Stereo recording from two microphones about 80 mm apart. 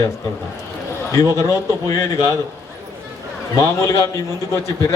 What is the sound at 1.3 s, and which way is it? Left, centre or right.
Speech, left.